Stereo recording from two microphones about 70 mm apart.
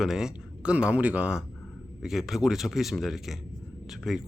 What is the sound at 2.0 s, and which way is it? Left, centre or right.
Speech, centre.